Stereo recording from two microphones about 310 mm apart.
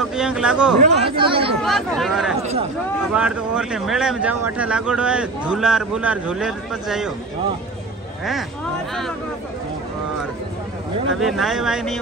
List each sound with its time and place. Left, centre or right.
0.1 s a man's voice: centre
0.7 s speech: centre
1.6 s a man's voice: centre
11.1 s a man's voice: centre